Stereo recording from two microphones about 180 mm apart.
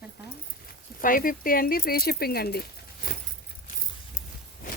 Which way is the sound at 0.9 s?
50° left (ahead or behind).